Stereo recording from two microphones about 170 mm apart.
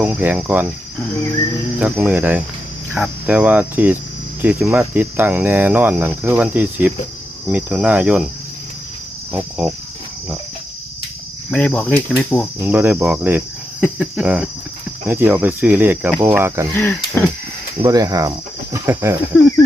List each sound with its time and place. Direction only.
0.0 s speech: 10° right (ahead or behind)
1.8 s speech: 10° right (ahead or behind)
9.3 s cricket: 5° right (ahead or behind)
11.5 s cricket: 5° left (ahead or behind)
12.5 s speech: 10° right (ahead or behind)
16.7 s cricket: 10° left (ahead or behind)
17.8 s speech: 20° right (ahead or behind)
19.3 s cricket: 10° left (ahead or behind)